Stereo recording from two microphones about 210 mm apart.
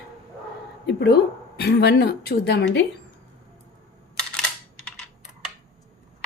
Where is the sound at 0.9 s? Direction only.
50° left (ahead or behind).